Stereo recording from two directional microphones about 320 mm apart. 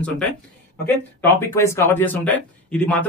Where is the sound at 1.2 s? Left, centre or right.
Centre.